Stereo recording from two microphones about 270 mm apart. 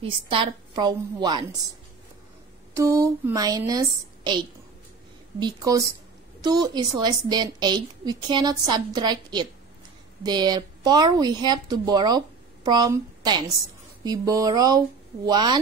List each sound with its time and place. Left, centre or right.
0.0 s a woman's voice: centre
2.8 s a woman's voice: centre
5.4 s a woman's voice: centre